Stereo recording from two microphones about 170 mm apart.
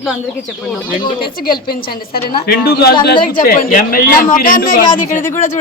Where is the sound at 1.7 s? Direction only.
65° left (ahead or behind).